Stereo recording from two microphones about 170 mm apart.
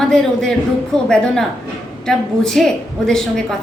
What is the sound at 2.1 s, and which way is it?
A woman's voice, centre (ahead or behind).